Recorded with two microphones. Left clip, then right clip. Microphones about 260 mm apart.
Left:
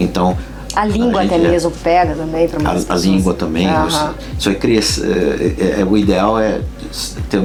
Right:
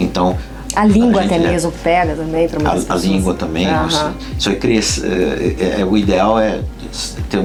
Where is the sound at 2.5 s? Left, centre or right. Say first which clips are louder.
Even; left.